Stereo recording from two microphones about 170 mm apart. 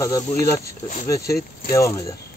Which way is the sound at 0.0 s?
20° left (ahead or behind).